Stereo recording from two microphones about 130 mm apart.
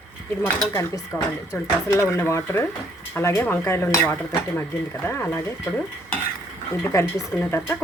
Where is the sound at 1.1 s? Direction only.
15° left (ahead or behind).